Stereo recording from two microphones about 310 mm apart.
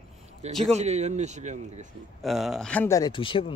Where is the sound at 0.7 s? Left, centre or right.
Right.